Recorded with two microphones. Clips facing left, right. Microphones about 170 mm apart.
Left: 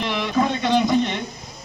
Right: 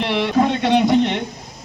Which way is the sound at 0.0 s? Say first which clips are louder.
Right 4 dB; 70° right (ahead or behind).